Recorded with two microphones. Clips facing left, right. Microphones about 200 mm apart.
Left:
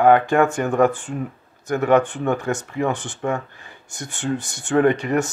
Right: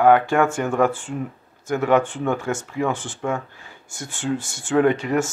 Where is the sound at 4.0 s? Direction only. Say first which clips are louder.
Even; 60° left (ahead or behind).